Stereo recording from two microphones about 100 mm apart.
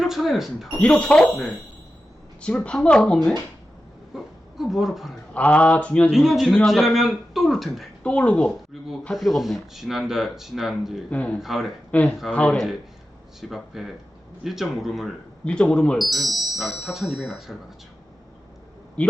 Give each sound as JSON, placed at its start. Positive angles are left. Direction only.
{"t": 0.0, "sound": "speech", "side_deg": 0}
{"t": 0.8, "sound": "speech", "side_deg": 10}
{"t": 4.1, "sound": "a sound", "side_deg": 0}
{"t": 5.3, "sound": "speech", "side_deg": 15}
{"t": 6.1, "sound": "speech", "side_deg": -5}
{"t": 8.0, "sound": "speech", "side_deg": 10}
{"t": 9.1, "sound": "speech", "side_deg": 0}
{"t": 11.1, "sound": "speech", "side_deg": 15}
{"t": 11.3, "sound": "speech", "side_deg": -5}
{"t": 11.9, "sound": "speech", "side_deg": 15}
{"t": 13.4, "sound": "speech", "side_deg": -5}
{"t": 15.4, "sound": "speech", "side_deg": 10}
{"t": 19.0, "sound": "speech", "side_deg": 15}